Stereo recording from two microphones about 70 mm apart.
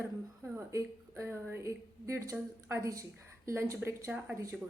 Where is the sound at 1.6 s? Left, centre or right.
Right.